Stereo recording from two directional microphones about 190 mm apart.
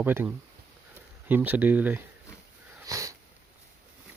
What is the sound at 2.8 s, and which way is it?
Sniff, 15° right (ahead or behind).